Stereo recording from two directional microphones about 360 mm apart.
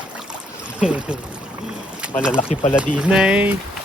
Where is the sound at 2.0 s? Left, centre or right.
Centre.